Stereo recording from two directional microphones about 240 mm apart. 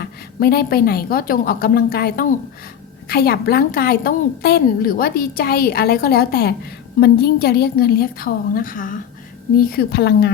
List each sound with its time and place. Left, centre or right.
0.0 s a woman's voice: left